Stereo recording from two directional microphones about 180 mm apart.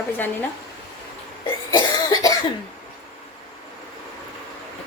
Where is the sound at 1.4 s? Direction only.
20° left (ahead or behind).